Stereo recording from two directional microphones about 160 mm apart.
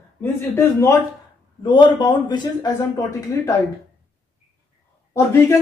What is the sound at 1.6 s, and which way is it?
A man's voice, 30° left (ahead or behind).